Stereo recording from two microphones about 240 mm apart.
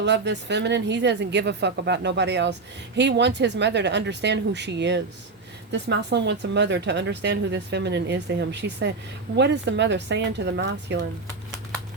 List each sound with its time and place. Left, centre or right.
0.0 s a woman's voice: right